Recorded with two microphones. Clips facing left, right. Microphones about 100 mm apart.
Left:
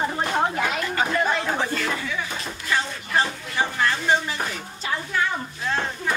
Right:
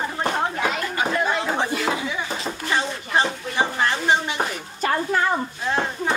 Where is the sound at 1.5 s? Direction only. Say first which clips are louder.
Right 2 dB; 20° right (ahead or behind).